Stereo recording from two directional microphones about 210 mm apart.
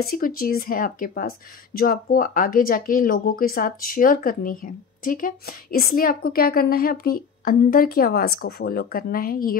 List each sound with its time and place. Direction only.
0.0 s speech: 45° left (ahead or behind)